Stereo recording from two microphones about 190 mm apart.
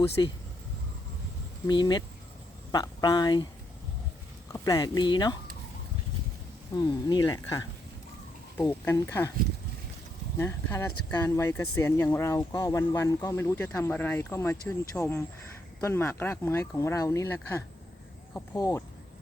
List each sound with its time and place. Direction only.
0.2 s speech: 20° left (ahead or behind)
1.6 s speech: 20° left (ahead or behind)
4.5 s speech: 20° left (ahead or behind)
6.7 s speech: 20° left (ahead or behind)
10.3 s speech: 15° left (ahead or behind)